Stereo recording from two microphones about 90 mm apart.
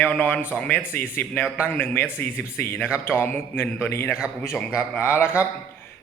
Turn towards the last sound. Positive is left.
turn(degrees=30)  # may be behind; listen again after turning